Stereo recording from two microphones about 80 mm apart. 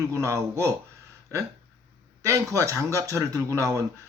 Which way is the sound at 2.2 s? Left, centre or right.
Right.